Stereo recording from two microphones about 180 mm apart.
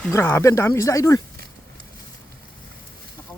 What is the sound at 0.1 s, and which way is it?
Speech, 15° left (ahead or behind).